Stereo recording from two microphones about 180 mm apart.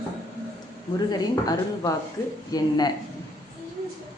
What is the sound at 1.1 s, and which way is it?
Speech, 20° left (ahead or behind).